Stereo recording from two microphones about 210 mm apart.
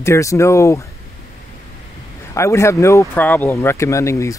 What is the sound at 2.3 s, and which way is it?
Speech, 15° left (ahead or behind).